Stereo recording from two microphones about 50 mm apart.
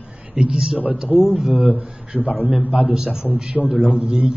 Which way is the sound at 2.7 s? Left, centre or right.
Centre.